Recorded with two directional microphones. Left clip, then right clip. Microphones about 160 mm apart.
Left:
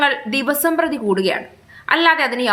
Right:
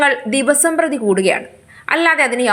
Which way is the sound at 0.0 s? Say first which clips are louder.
Right 3 dB; 20° right (ahead or behind).